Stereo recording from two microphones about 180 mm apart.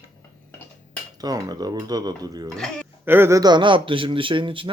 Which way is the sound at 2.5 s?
5° left (ahead or behind).